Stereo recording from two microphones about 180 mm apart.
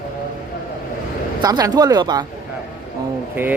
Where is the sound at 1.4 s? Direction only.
20° right (ahead or behind).